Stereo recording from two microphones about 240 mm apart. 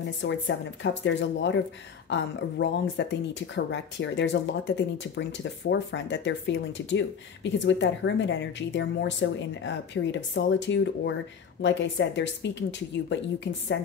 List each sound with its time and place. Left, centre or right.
0.2 s speech: left